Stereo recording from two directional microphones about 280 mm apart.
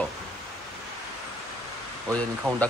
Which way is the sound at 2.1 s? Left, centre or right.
Centre.